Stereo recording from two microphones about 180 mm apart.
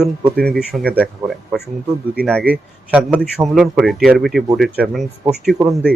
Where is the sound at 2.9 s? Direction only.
10° right (ahead or behind).